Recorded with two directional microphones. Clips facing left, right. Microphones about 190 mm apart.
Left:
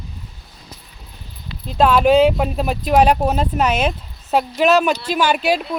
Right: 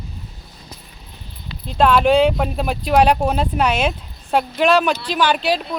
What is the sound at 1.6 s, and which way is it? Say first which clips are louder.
Speech: left 1 dB; 5° left (ahead or behind).